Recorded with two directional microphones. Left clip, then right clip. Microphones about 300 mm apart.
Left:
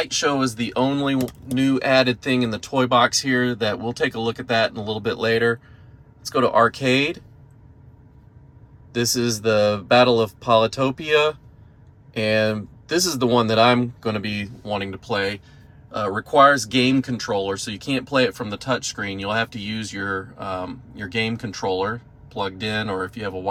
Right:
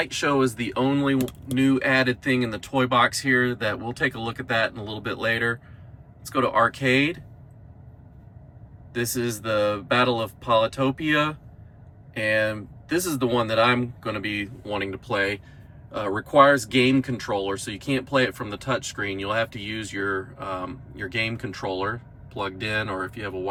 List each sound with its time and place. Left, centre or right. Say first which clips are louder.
0.0 s speech: left 1 dB; centre
8.9 s speech: left 5 dB; centre